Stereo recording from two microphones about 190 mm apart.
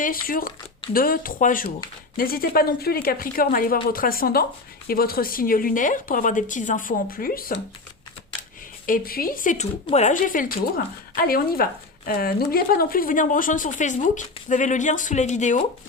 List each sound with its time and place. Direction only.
0.0 s speech: 50° left (ahead or behind)
8.9 s speech: 50° left (ahead or behind)